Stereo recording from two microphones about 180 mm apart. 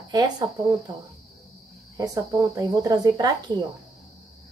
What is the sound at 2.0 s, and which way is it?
Speech, 20° right (ahead or behind).